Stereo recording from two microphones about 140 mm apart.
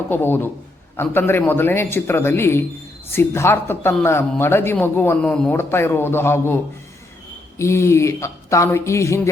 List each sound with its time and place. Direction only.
0.1 s a man's voice: 15° left (ahead or behind)
7.6 s speech: 20° left (ahead or behind)